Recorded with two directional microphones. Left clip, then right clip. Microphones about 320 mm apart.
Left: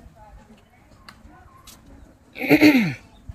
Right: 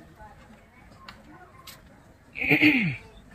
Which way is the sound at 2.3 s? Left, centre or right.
Centre.